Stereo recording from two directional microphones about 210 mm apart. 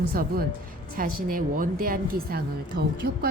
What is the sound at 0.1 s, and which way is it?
A woman's voice, 45° right (ahead or behind).